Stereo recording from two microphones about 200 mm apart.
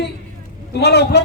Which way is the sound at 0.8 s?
55° left (ahead or behind).